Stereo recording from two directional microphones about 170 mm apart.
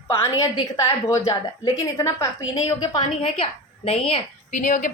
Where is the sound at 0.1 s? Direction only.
15° left (ahead or behind); by 4.0 s 35° left (ahead or behind).